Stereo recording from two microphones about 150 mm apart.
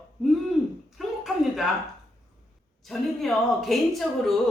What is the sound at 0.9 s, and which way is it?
Speech, centre (ahead or behind).